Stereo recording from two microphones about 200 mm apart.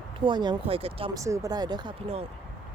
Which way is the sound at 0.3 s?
20° right (ahead or behind).